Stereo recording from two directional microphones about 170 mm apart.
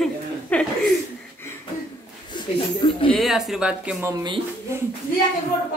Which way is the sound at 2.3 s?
25° left (ahead or behind).